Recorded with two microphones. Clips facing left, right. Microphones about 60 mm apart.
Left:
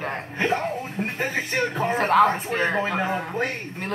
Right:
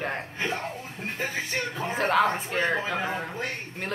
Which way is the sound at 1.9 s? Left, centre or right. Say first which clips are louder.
Left 4 dB; centre.